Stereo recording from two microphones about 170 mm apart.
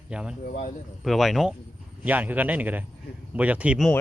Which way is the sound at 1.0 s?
Centre (ahead or behind).